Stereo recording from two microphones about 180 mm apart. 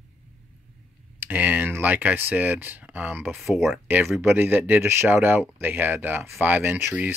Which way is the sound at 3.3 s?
Centre (ahead or behind).